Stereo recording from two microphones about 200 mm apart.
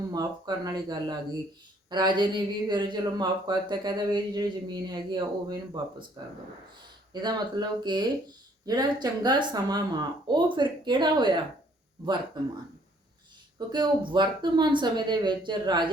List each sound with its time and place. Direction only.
0.1 s speech: 20° right (ahead or behind)
7.1 s speech: 20° right (ahead or behind)
13.7 s speech: 20° right (ahead or behind)